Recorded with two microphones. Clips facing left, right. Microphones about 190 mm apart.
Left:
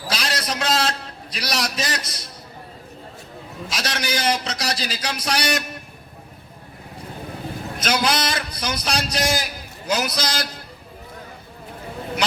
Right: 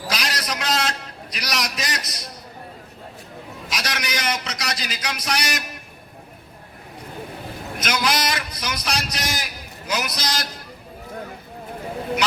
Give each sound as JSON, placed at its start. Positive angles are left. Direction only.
{"t": 0.1, "sound": "a sound", "side_deg": 30}
{"t": 3.7, "sound": "a man's voice", "side_deg": 30}
{"t": 7.8, "sound": "a man's voice", "side_deg": 30}